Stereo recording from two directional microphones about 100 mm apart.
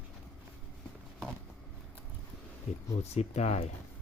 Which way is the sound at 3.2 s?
90° left.